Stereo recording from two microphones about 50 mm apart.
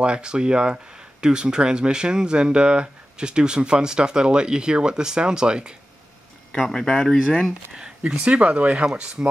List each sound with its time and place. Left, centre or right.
0.0 s speech: centre
6.7 s speech: centre
7.7 s speech: centre